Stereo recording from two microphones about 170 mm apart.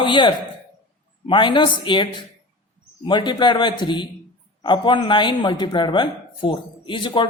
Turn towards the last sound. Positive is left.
turn(degrees=30)  # may be behind; listen again after turning